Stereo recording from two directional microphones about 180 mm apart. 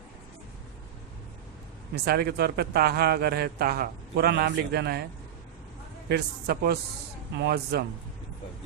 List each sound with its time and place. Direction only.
2.0 s speech: 60° right (ahead or behind)
6.1 s speech: 60° right (ahead or behind)